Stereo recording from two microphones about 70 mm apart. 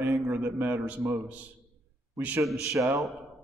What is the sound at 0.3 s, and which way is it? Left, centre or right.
A man's voice, right.